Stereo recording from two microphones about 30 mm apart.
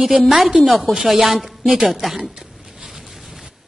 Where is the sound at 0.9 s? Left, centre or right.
Centre.